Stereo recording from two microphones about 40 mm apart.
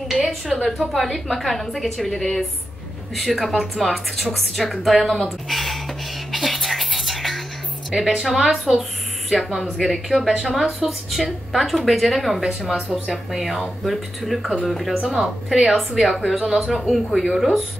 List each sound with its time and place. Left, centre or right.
0.1 s a sound: centre
0.5 s a woman's voice: centre
5.5 s a sound: centre
6.3 s music: centre
7.9 s a woman's voice: centre
15.0 s speech: centre
15.6 s a woman's voice: centre